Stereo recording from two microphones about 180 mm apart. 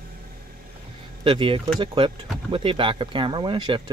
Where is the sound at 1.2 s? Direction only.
25° right (ahead or behind).